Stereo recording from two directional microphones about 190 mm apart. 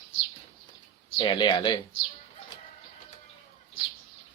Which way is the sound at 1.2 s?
25° left (ahead or behind).